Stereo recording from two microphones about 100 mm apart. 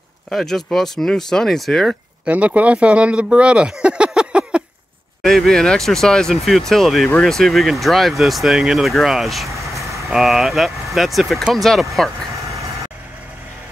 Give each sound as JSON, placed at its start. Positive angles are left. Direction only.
{"t": 0.3, "sound": "speech", "side_deg": 5}
{"t": 2.2, "sound": "speech", "side_deg": -15}
{"t": 5.2, "sound": "speech", "side_deg": 0}
{"t": 9.5, "sound": "vehicle", "side_deg": -30}
{"t": 10.0, "sound": "speech", "side_deg": -5}